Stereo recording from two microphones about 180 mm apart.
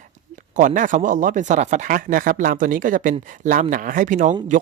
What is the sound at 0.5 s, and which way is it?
Speech, 45° right (ahead or behind).